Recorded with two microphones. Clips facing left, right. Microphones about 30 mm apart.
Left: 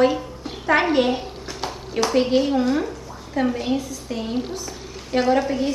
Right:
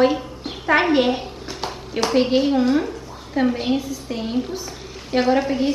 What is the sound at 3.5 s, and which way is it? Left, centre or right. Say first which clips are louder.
A woman's voice: right 2 dB; right.